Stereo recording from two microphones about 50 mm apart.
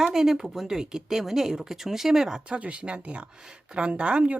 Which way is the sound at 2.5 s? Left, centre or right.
Right.